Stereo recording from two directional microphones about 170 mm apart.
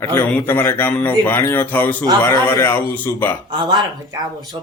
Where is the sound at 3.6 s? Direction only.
25° right (ahead or behind).